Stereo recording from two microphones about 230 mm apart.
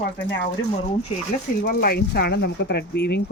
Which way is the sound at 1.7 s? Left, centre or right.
Left.